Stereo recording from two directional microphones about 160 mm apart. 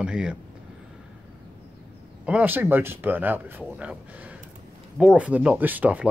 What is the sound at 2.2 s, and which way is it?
Speech, 10° right (ahead or behind).